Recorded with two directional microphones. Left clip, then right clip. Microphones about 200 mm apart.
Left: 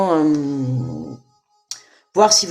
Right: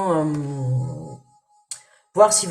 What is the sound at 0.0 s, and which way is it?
Music, 45° left (ahead or behind).